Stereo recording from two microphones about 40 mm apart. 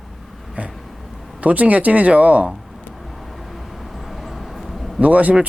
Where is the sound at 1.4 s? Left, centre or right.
Right.